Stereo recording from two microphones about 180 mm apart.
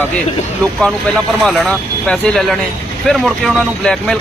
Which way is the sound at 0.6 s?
5° left (ahead or behind).